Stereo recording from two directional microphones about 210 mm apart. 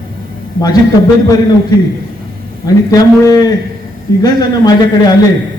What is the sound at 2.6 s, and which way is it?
A man's voice, 15° left (ahead or behind).